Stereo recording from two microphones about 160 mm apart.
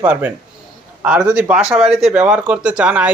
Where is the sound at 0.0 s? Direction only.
10° right (ahead or behind).